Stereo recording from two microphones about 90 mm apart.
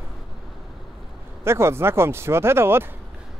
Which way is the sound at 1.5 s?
30° right (ahead or behind).